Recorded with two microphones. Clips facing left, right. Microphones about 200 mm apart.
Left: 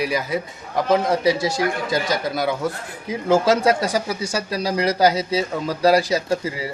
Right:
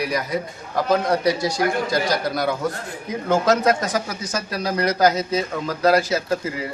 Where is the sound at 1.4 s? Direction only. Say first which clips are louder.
Left 1 dB; 25° left (ahead or behind).